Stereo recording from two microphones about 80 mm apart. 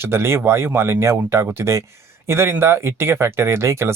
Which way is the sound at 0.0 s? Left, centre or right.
Right.